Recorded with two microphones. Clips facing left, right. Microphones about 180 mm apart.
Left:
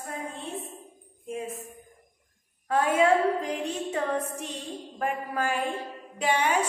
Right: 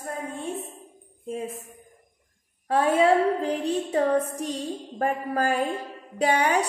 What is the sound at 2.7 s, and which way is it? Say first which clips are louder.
A woman's voice: right 2 dB; 30° right (ahead or behind).